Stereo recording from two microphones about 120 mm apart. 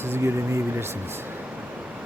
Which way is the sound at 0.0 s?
20° right (ahead or behind).